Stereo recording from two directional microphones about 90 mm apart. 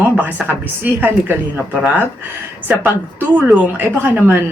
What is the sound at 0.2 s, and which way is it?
A woman's voice, 20° right (ahead or behind).